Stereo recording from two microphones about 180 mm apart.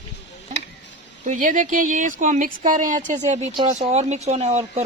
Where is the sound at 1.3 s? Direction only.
45° right (ahead or behind).